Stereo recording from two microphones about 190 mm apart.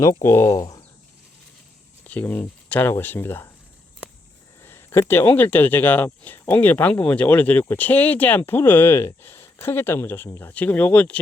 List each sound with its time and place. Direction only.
0.0 s speech: 15° left (ahead or behind)
2.0 s speech: 10° left (ahead or behind)
4.6 s speech: 10° left (ahead or behind)